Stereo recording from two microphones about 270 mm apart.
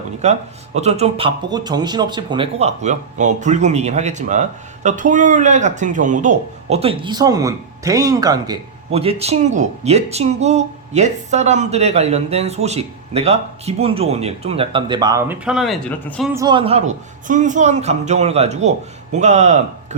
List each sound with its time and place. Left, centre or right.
0.2 s speech: right; by 16.3 s centre
16.3 s speech: centre